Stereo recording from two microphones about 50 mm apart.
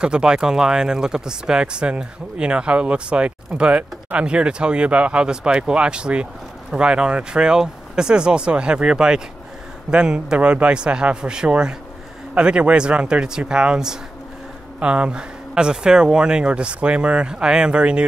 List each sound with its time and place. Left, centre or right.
0.0 s speech: centre